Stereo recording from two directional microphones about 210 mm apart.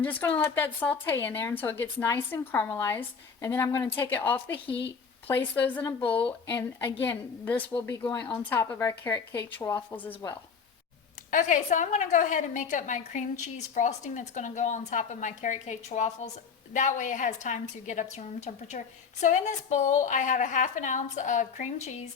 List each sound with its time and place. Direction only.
0.0 s speech: 5° left (ahead or behind)
5.5 s speech: 10° left (ahead or behind)
11.3 s a woman's voice: 35° left (ahead or behind)